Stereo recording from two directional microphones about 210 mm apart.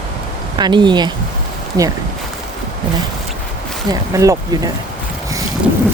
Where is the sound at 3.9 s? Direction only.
15° right (ahead or behind).